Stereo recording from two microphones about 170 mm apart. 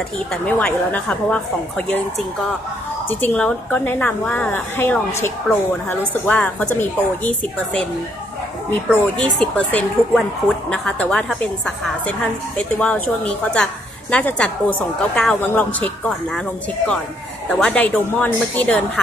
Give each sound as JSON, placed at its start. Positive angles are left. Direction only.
{"t": 0.3, "sound": "a woman's voice", "side_deg": 5}
{"t": 3.1, "sound": "a woman's voice", "side_deg": 10}
{"t": 8.9, "sound": "a woman's voice", "side_deg": 5}